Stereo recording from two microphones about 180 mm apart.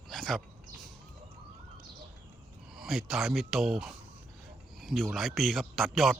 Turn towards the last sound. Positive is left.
turn(degrees=0)  # may be behind; listen again after turning